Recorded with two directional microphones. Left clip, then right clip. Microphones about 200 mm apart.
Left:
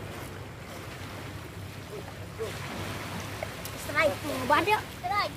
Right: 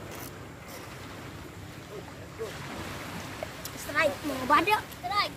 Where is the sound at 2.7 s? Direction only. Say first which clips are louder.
Left 2 dB; 30° left (ahead or behind).